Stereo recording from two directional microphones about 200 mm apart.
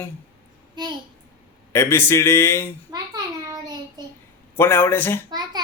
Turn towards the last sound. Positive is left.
turn(degrees=-20)  # may be behind; listen again after turning